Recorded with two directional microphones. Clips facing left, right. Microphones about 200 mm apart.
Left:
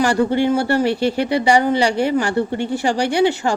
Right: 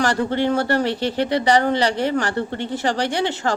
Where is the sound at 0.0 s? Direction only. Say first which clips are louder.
Left 4 dB; 10° left (ahead or behind).